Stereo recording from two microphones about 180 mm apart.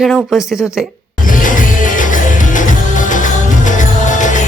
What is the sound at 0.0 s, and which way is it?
Speech, centre (ahead or behind).